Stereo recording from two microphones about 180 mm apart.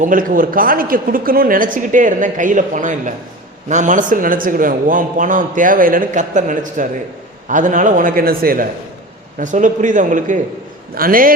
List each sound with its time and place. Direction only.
0.0 s a man's voice: 50° right (ahead or behind)